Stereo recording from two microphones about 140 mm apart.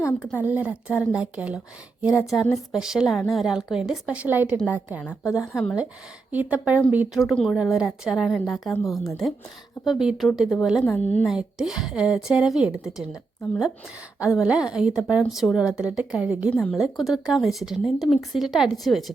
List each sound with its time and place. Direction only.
0.0 s speech: 15° left (ahead or behind)
0.3 s a woman's voice: 10° right (ahead or behind)
5.0 s a woman's voice: 20° left (ahead or behind)
5.5 s a woman's voice: centre (ahead or behind)
7.3 s a woman's voice: centre (ahead or behind)
8.7 s a woman's voice: 20° left (ahead or behind)
9.8 s a woman's voice: centre (ahead or behind)
11.3 s a woman's voice: 5° right (ahead or behind)
14.3 s a woman's voice: 5° right (ahead or behind)